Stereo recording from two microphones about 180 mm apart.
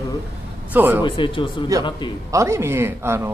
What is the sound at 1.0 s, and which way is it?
Speech, 30° left (ahead or behind).